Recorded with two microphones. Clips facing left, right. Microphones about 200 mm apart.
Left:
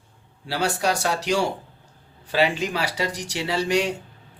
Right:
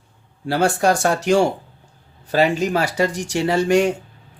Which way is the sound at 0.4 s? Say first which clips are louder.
Right 6 dB; 50° right (ahead or behind).